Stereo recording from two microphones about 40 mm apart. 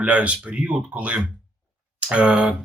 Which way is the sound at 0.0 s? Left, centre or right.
Right.